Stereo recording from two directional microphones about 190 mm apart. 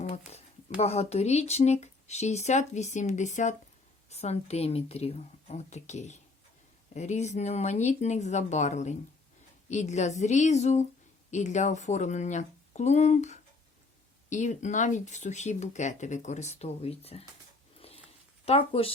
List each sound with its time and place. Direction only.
0.8 s speech: 35° left (ahead or behind)
17.7 s a sound: 30° left (ahead or behind)
18.4 s speech: 30° left (ahead or behind)